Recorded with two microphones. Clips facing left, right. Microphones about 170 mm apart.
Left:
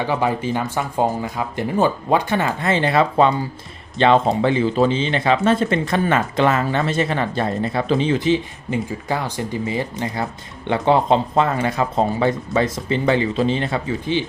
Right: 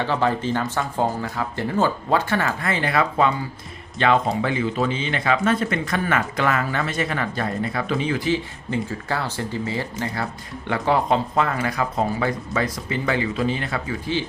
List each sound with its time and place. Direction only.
0.0 s speech: 15° left (ahead or behind)